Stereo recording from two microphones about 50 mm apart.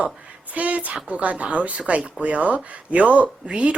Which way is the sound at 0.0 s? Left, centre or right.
Right.